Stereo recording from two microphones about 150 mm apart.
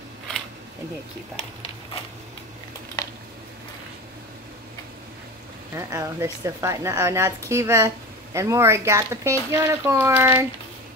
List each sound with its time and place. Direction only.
5.8 s a woman's voice: 20° right (ahead or behind)